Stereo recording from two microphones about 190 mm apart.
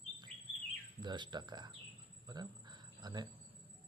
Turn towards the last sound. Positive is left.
turn(degrees=-20)  # may be behind; listen again after turning